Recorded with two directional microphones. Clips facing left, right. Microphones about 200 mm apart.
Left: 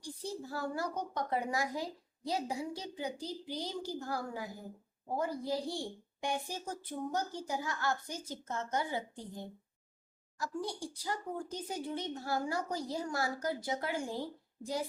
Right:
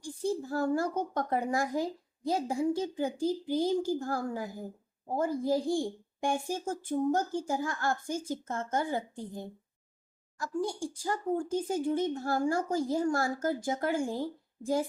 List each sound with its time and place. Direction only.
0.0 s a woman's voice: 50° right (ahead or behind)
10.3 s a woman's voice: 50° right (ahead or behind)